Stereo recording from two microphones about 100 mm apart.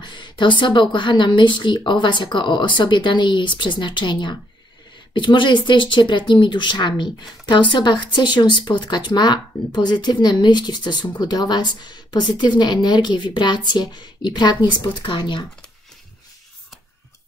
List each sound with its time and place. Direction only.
0.0 s speech: 50° left (ahead or behind)